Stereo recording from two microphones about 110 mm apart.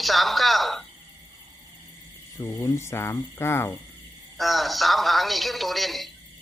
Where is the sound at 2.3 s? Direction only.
25° left (ahead or behind).